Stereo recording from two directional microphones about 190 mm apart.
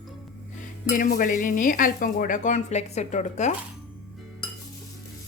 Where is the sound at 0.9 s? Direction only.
45° left (ahead or behind).